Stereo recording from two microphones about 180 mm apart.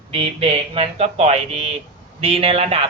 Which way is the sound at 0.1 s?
30° right (ahead or behind).